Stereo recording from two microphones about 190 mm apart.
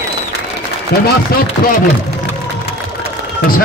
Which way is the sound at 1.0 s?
55° left (ahead or behind).